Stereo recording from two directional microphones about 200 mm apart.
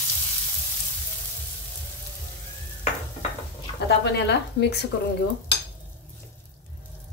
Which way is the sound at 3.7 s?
55° left (ahead or behind).